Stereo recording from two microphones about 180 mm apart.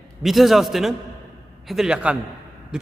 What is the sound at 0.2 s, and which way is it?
A man's voice, centre (ahead or behind).